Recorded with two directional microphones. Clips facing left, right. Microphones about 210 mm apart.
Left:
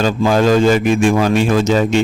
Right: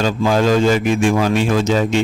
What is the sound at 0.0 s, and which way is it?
Speech, 45° left (ahead or behind).